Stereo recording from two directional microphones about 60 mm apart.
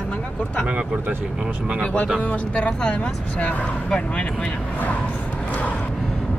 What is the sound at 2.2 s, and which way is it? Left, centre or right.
Speech, left.